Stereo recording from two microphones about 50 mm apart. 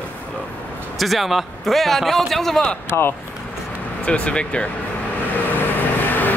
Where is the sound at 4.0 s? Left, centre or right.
Left.